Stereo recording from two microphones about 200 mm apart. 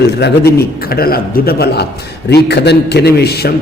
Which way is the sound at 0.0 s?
50° left (ahead or behind).